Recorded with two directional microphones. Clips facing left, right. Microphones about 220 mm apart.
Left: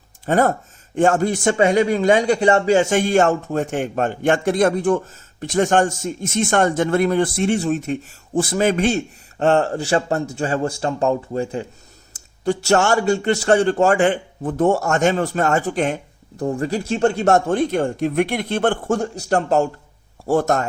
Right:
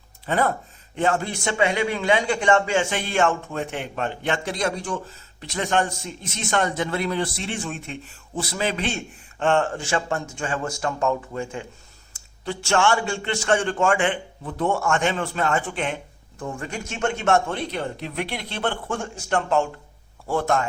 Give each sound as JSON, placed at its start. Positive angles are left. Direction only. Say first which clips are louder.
{"t": 0.3, "sound": "a man's voice", "louder": "left 6 dB", "side_deg": 45}